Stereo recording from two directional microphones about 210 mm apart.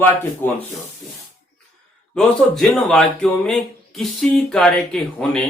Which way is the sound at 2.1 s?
Centre (ahead or behind).